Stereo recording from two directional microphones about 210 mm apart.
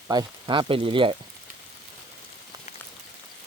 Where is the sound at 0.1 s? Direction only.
20° right (ahead or behind).